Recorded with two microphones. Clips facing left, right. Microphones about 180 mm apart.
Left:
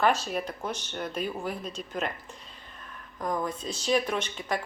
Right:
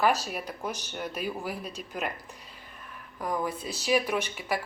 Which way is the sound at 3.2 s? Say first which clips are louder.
Even; 10° right (ahead or behind).